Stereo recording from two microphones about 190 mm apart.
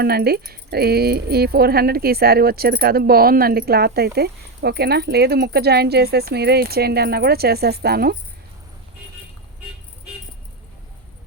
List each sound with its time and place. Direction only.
0.0 s speech: 55° right (ahead or behind)